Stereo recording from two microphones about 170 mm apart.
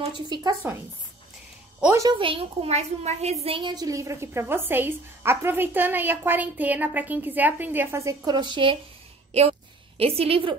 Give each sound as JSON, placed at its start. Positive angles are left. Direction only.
{"t": 0.3, "sound": "speech", "side_deg": -25}
{"t": 2.0, "sound": "a woman's voice", "side_deg": -25}
{"t": 3.4, "sound": "a woman's voice", "side_deg": -30}
{"t": 9.3, "sound": "a sound", "side_deg": -35}